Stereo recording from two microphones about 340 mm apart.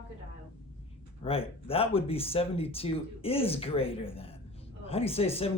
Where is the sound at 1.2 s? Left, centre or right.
Centre.